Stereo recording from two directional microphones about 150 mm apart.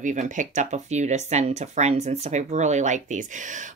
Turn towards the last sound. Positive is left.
turn(degrees=-55)  # may be behind; listen again after turning